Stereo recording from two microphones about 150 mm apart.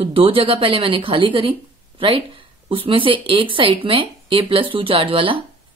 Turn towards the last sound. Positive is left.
turn(degrees=-35)  # may be behind; listen again after turning